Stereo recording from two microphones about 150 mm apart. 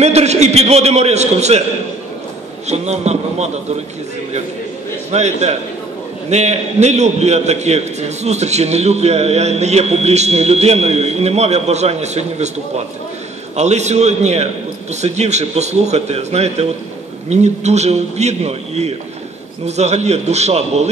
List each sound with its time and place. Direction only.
0.0 s a man's voice: 45° right (ahead or behind)
2.6 s a man's voice: 50° right (ahead or behind)
5.1 s a man's voice: 45° right (ahead or behind)